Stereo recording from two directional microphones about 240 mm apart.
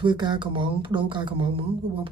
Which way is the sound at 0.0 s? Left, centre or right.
Centre.